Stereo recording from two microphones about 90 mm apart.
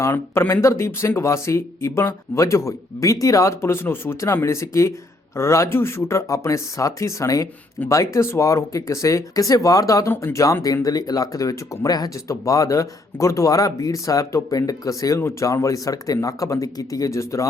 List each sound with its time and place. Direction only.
0.0 s speech: 25° left (ahead or behind)
10.1 s speech: 25° left (ahead or behind)
10.3 s speech: 35° left (ahead or behind)